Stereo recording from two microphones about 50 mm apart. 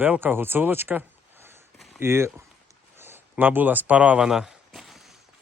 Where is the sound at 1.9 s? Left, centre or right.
Right.